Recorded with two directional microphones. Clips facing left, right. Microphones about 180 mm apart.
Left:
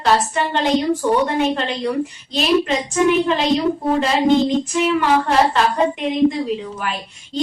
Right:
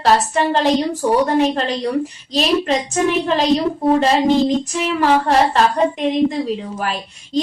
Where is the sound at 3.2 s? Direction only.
40° right (ahead or behind).